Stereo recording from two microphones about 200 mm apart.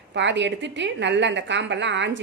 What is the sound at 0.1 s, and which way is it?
A woman's voice, 60° right (ahead or behind).